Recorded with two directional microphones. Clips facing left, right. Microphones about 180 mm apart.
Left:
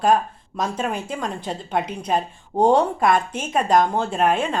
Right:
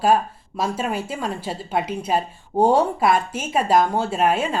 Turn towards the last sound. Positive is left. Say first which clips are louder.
# even
turn(degrees=-5)  # may be behind; listen again after turning